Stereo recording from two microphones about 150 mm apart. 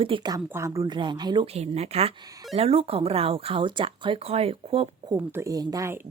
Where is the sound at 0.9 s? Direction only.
30° right (ahead or behind).